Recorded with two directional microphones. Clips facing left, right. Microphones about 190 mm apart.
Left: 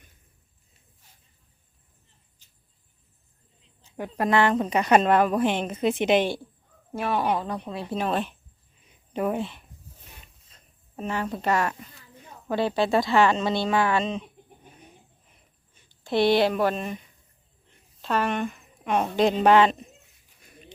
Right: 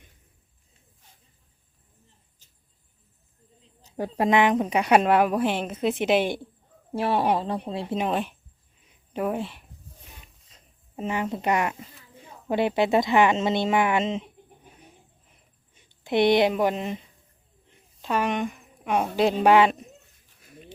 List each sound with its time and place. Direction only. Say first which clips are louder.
3.6 s a sound: right 4 dB; 40° right (ahead or behind)
4.3 s a woman's voice: right 1 dB; 15° right (ahead or behind)
6.2 s speech: even; 20° right (ahead or behind)
9.1 s a sound: left 1 dB; 5° right (ahead or behind)
10.5 s speech: right 2 dB; 20° right (ahead or behind)
16.0 s speech: right 1 dB; 20° right (ahead or behind)
18.0 s speech: even; 10° right (ahead or behind)